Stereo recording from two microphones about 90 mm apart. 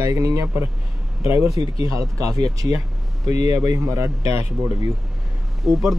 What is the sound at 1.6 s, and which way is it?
Speech, 50° right (ahead or behind).